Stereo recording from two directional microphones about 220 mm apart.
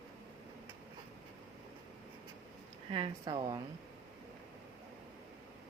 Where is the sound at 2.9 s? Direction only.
20° right (ahead or behind).